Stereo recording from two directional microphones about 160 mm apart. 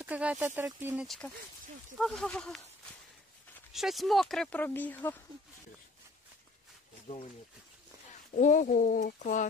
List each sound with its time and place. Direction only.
0.0 s speech: 10° right (ahead or behind)
1.0 s speech: 5° left (ahead or behind)
3.7 s speech: centre (ahead or behind)
8.4 s speech: 50° left (ahead or behind)